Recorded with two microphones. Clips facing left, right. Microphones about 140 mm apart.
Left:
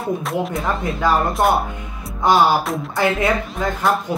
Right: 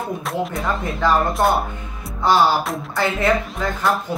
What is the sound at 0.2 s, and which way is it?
Music, centre (ahead or behind).